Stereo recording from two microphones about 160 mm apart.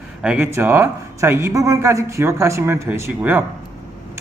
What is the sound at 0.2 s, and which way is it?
Speech, 10° right (ahead or behind).